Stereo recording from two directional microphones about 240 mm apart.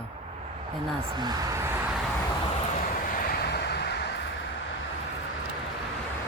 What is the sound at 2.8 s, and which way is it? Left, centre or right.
Vehicle, left.